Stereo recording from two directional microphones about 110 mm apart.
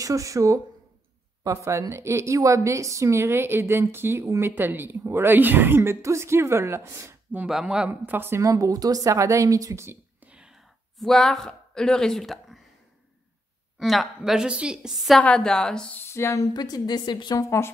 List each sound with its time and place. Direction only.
0.0 s a woman's voice: 30° right (ahead or behind)
7.4 s a woman's voice: 5° right (ahead or behind); by 9.9 s 30° right (ahead or behind)
10.2 s a sound: 10° right (ahead or behind)
13.7 s a woman's voice: centre (ahead or behind)
15.1 s a woman's voice: 5° left (ahead or behind)
16.1 s speech: 25° left (ahead or behind)
16.5 s a woman's voice: 40° left (ahead or behind)
17.4 s speech: 25° left (ahead or behind)